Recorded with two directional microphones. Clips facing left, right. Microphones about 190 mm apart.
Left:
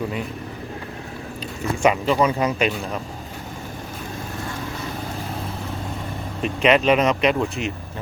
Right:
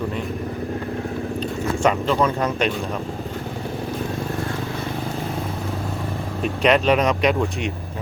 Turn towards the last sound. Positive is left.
turn(degrees=0)  # may be behind; listen again after turning